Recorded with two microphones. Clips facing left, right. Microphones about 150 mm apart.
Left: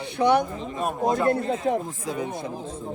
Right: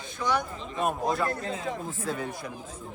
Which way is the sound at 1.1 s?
20° left (ahead or behind).